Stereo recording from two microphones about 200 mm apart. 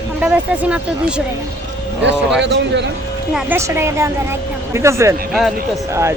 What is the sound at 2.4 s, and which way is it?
Speech, 60° right (ahead or behind).